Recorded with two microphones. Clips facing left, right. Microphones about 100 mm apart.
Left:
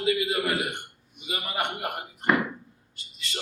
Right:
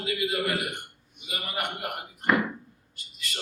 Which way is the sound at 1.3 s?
25° left (ahead or behind).